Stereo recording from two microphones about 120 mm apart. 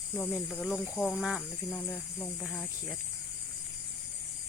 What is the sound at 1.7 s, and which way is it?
Speech, 10° left (ahead or behind).